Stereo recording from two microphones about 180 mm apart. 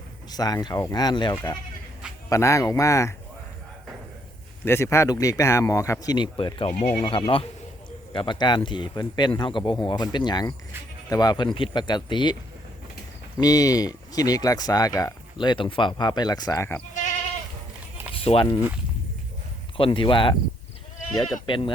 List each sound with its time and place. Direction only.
0.3 s speech: 20° left (ahead or behind)
4.6 s speech: 15° left (ahead or behind)
13.4 s speech: 20° left (ahead or behind)
18.2 s speech: 30° left (ahead or behind)
19.7 s speech: 30° left (ahead or behind)
21.4 s speech: 30° left (ahead or behind)